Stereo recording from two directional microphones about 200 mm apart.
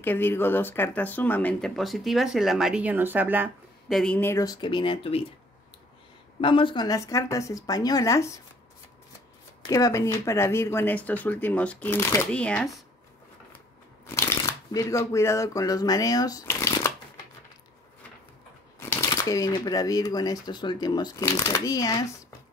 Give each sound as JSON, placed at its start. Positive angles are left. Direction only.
{"t": 0.0, "sound": "speech", "side_deg": 10}
{"t": 3.9, "sound": "speech", "side_deg": 5}
{"t": 6.4, "sound": "speech", "side_deg": 25}
{"t": 9.7, "sound": "speech", "side_deg": 15}
{"t": 14.0, "sound": "speech", "side_deg": 15}
{"t": 18.8, "sound": "speech", "side_deg": 15}